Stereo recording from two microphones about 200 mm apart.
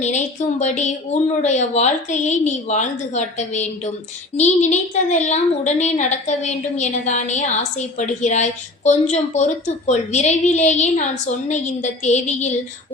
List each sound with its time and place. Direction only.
0.0 s a woman's voice: 35° left (ahead or behind)